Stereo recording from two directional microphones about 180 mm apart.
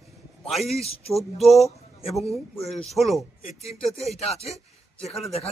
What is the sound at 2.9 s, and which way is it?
A man's voice, centre (ahead or behind).